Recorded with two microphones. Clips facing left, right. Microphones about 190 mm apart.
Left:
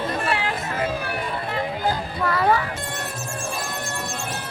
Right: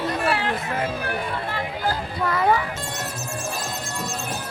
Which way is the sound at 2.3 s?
20° right (ahead or behind).